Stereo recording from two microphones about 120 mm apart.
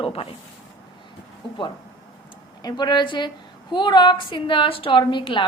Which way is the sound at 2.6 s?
35° left (ahead or behind).